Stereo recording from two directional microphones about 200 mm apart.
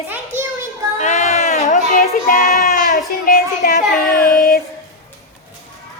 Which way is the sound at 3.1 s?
40° left (ahead or behind).